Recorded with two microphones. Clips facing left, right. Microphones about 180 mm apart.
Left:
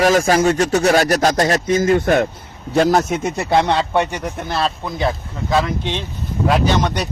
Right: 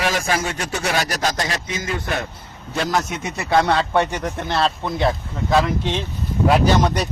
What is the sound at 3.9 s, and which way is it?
Speech, 15° left (ahead or behind).